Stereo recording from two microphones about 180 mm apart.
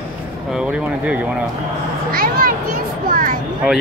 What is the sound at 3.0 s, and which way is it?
Speech, 50° right (ahead or behind).